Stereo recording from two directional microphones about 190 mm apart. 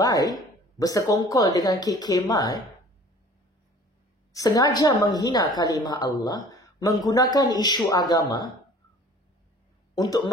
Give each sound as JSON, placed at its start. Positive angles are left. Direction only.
{"t": 0.0, "sound": "speech", "side_deg": 20}
{"t": 4.3, "sound": "speech", "side_deg": 15}
{"t": 9.9, "sound": "speech", "side_deg": 20}